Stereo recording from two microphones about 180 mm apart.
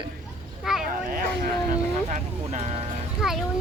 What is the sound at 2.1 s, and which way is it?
Vehicle, 40° right (ahead or behind).